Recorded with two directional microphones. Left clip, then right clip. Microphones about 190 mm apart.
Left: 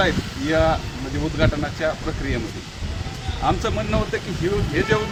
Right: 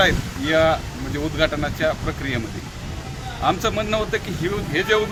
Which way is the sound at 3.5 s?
15° right (ahead or behind).